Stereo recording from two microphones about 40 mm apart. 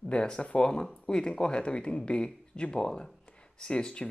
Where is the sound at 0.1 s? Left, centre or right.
Left.